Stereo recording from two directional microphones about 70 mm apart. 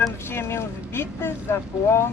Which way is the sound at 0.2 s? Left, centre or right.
Left.